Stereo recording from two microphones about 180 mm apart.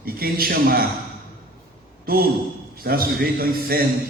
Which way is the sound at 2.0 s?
55° right (ahead or behind).